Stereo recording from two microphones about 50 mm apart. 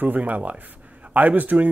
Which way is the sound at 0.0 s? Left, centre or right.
Right.